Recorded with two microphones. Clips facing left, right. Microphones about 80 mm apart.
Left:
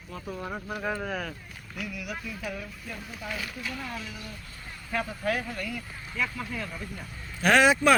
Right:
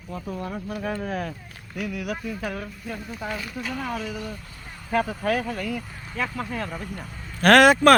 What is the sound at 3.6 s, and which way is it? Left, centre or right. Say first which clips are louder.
Speech: right 7 dB; right.